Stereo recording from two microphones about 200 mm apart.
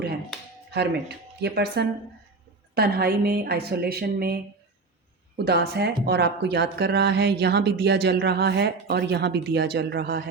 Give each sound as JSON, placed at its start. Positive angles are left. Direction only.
{"t": 0.7, "sound": "a woman's voice", "side_deg": -55}
{"t": 5.5, "sound": "speech", "side_deg": -55}